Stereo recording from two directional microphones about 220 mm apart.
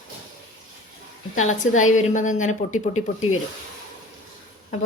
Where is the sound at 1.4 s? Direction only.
35° left (ahead or behind).